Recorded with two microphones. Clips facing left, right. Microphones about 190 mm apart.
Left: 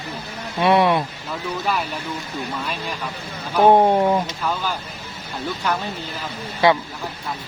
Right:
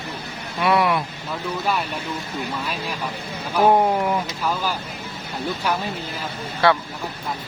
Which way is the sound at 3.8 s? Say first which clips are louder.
Left 4 dB; 25° left (ahead or behind).